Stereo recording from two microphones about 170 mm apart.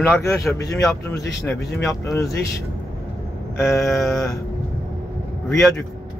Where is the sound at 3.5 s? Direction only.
15° left (ahead or behind).